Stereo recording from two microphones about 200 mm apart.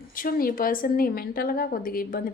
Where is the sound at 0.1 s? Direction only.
45° left (ahead or behind).